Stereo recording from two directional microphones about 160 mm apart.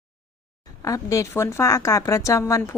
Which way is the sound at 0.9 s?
20° left (ahead or behind).